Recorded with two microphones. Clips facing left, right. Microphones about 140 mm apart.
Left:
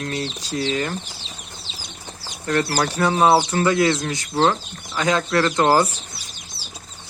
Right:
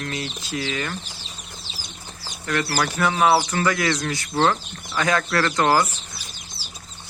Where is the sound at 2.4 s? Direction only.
30° left (ahead or behind).